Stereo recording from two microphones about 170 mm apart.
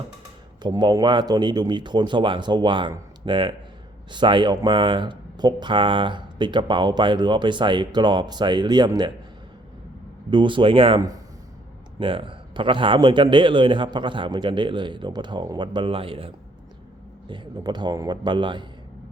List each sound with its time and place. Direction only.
0.6 s speech: 25° right (ahead or behind)
10.2 s speech: 30° right (ahead or behind)